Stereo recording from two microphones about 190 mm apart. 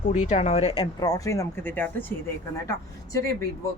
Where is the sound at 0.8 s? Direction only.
20° left (ahead or behind).